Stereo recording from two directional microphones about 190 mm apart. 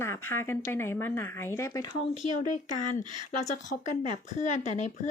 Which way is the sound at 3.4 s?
40° left (ahead or behind).